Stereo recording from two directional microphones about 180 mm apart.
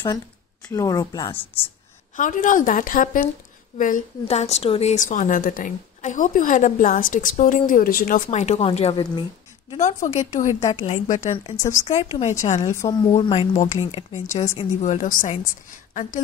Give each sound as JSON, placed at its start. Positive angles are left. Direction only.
{"t": 0.7, "sound": "speech", "side_deg": 20}
{"t": 2.1, "sound": "a woman's voice", "side_deg": 45}
{"t": 9.8, "sound": "speech", "side_deg": 45}
{"t": 11.5, "sound": "a woman's voice", "side_deg": 15}
{"t": 11.9, "sound": "speech", "side_deg": 35}
{"t": 12.7, "sound": "speech", "side_deg": 20}
{"t": 13.1, "sound": "speech", "side_deg": 30}